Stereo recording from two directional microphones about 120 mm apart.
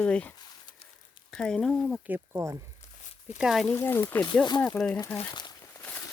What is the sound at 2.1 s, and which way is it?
Speech, 20° right (ahead or behind).